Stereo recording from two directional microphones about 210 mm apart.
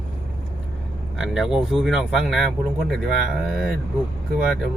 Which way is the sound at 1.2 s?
Centre (ahead or behind).